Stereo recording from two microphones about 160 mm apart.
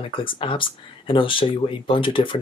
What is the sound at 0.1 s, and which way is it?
Speech, 30° left (ahead or behind).